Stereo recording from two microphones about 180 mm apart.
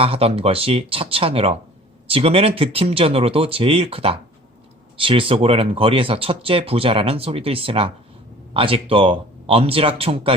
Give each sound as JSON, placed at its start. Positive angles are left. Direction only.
{"t": 0.0, "sound": "speech", "side_deg": -35}